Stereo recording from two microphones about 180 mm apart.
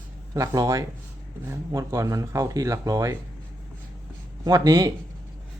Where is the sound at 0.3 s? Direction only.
20° right (ahead or behind).